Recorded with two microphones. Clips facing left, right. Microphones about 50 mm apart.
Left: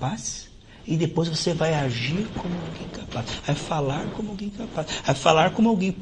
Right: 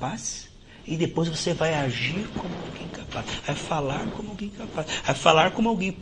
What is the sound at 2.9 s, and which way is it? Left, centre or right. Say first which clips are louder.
Speech: even; right.